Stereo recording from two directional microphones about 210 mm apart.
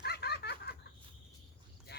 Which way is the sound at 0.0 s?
50° left (ahead or behind).